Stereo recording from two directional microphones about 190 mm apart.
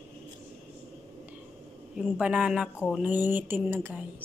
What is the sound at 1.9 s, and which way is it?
A man's voice, 5° right (ahead or behind).